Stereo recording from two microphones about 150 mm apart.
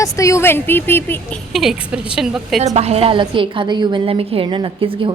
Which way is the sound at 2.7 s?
45° right (ahead or behind).